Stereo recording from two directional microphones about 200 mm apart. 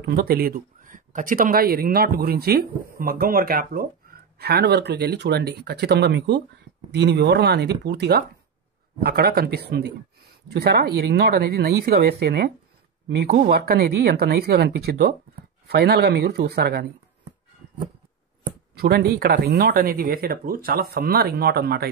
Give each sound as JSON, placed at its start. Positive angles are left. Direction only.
{"t": 0.0, "sound": "speech", "side_deg": -50}
{"t": 18.8, "sound": "speech", "side_deg": -55}